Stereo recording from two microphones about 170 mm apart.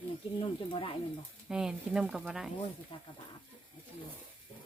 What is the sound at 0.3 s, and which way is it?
Speech, 30° left (ahead or behind).